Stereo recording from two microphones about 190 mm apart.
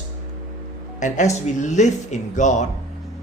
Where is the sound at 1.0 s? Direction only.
40° left (ahead or behind).